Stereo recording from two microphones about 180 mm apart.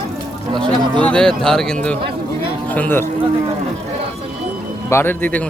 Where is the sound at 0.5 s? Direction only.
25° right (ahead or behind).